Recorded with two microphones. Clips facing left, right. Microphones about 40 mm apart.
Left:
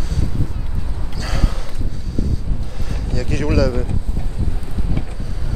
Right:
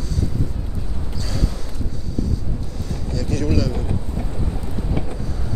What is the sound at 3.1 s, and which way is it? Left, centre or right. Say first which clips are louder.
Speech: left 1 dB; left.